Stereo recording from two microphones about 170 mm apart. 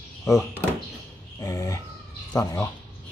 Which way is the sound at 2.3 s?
20° left (ahead or behind).